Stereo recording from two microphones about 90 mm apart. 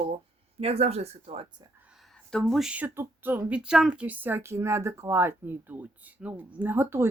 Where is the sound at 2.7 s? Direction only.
25° right (ahead or behind).